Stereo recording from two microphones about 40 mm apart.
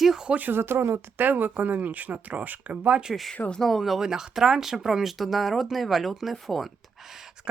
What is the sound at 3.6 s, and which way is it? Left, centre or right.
Speech, centre.